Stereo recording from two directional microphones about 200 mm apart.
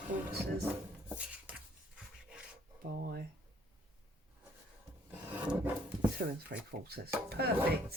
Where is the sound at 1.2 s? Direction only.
5° right (ahead or behind).